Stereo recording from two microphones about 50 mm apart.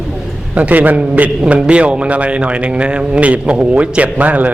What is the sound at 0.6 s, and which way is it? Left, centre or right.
A man's voice, right.